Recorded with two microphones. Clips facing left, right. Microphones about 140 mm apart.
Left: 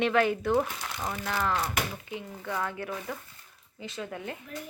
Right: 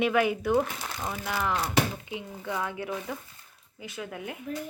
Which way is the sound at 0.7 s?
Centre (ahead or behind).